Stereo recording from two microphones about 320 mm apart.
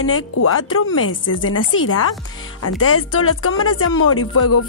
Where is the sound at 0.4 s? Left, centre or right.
Left.